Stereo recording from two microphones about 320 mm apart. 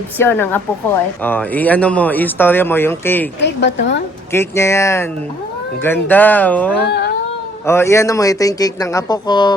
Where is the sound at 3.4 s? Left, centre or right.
Left.